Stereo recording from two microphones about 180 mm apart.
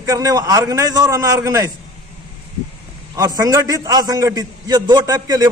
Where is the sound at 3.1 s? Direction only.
20° right (ahead or behind).